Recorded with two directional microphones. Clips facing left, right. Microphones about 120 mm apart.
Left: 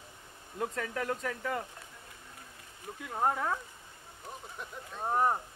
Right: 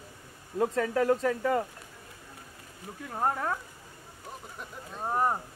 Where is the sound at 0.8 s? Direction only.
35° right (ahead or behind).